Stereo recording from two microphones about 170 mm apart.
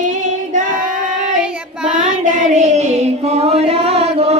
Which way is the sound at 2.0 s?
45° right (ahead or behind).